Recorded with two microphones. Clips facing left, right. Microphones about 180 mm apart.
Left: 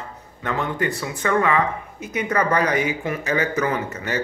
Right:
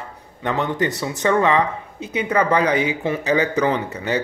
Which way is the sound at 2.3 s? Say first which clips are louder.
Right 3 dB; 10° right (ahead or behind).